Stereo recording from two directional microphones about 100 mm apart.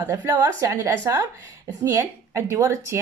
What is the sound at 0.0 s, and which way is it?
A woman's voice, 35° right (ahead or behind).